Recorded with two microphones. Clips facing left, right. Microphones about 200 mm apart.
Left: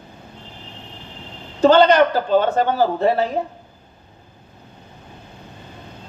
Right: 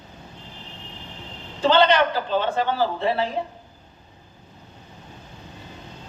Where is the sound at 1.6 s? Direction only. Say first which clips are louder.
Left 6 dB; 45° left (ahead or behind).